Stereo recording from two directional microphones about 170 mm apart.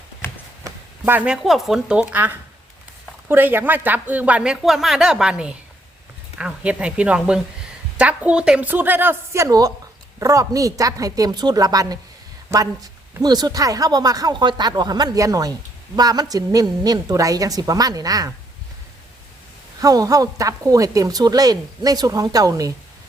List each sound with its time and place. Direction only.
0.2 s a sound: 10° left (ahead or behind)
0.6 s a woman's voice: 10° right (ahead or behind)
19.8 s a woman's voice: 20° right (ahead or behind)